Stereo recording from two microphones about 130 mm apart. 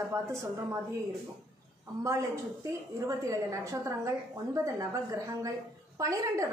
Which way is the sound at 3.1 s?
25° right (ahead or behind).